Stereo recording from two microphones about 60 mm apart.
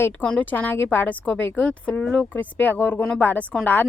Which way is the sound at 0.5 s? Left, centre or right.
Left.